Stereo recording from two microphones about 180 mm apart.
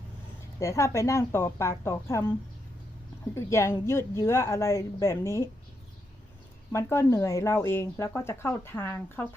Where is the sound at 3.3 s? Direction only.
15° left (ahead or behind).